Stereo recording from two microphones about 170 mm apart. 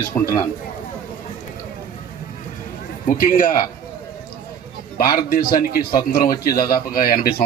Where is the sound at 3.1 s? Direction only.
55° left (ahead or behind).